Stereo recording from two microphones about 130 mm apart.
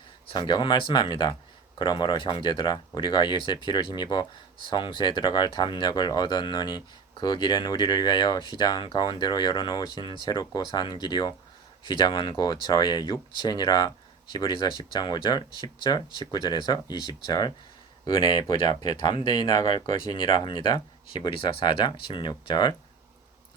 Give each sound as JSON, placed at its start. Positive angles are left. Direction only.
{"t": 0.3, "sound": "speech", "side_deg": 35}